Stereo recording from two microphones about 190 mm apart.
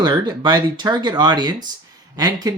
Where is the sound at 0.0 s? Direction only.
25° right (ahead or behind).